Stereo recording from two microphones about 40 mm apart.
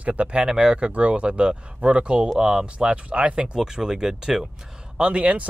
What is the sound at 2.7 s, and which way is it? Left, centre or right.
Speech, right.